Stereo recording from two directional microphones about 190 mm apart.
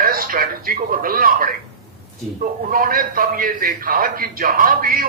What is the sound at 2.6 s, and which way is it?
A man's voice, 50° right (ahead or behind).